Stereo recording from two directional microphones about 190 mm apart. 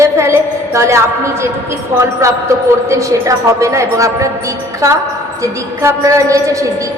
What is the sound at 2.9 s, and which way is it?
A woman's voice, 15° right (ahead or behind).